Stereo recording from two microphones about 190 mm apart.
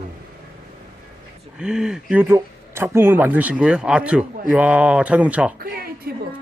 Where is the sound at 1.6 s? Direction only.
5° right (ahead or behind).